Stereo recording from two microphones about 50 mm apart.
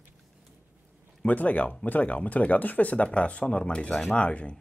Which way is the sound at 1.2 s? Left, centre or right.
Left.